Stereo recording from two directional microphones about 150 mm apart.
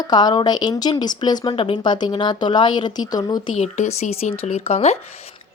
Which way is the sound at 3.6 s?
45° left (ahead or behind).